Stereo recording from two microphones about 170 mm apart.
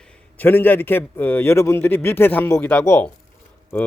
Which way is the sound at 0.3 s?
10° left (ahead or behind).